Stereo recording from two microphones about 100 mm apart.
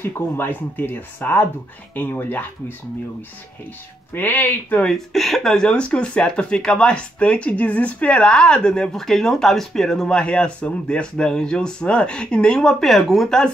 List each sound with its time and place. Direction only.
0.0 s speech: 20° left (ahead or behind)
4.1 s speech: 20° left (ahead or behind)
4.8 s speech: 5° left (ahead or behind)